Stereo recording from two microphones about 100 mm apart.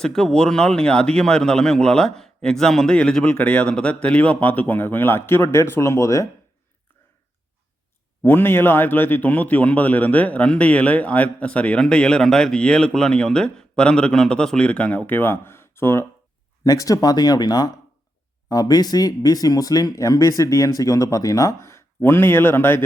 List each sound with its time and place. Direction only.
0.0 s a man's voice: 5° left (ahead or behind); by 6.2 s 30° left (ahead or behind)
8.2 s a man's voice: 20° left (ahead or behind)
16.6 s speech: 35° left (ahead or behind)